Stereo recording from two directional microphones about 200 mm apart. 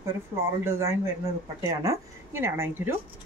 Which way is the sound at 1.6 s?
15° right (ahead or behind).